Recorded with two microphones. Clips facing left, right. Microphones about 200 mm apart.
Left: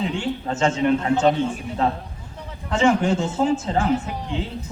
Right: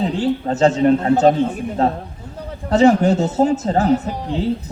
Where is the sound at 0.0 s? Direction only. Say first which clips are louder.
Right 6 dB; 35° right (ahead or behind).